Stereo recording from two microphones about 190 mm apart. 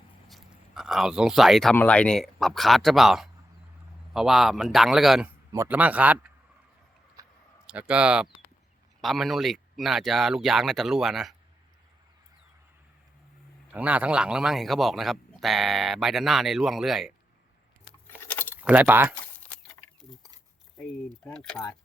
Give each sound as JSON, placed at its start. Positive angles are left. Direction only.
{"t": 0.3, "sound": "a sound", "side_deg": 0}
{"t": 1.7, "sound": "a man's voice", "side_deg": 5}
{"t": 5.5, "sound": "a man's voice", "side_deg": -15}
{"t": 7.2, "sound": "a sound", "side_deg": -15}
{"t": 7.7, "sound": "a man's voice", "side_deg": -5}
{"t": 13.7, "sound": "a man's voice", "side_deg": -5}
{"t": 18.3, "sound": "keys jangling", "side_deg": 10}
{"t": 18.5, "sound": "speech", "side_deg": -10}
{"t": 21.2, "sound": "a man's voice", "side_deg": 5}